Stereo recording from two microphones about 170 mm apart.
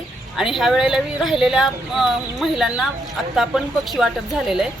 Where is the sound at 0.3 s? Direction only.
Centre (ahead or behind).